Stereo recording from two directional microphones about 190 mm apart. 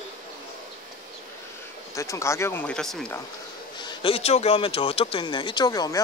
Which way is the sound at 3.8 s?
30° left (ahead or behind).